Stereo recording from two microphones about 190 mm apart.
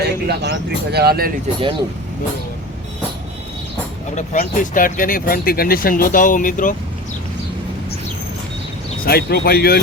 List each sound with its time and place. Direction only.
0.0 s speech: 60° right (ahead or behind)
4.1 s speech: 45° left (ahead or behind)
9.0 s speech: 55° left (ahead or behind)